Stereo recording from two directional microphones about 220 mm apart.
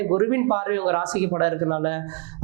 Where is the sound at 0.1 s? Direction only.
20° right (ahead or behind).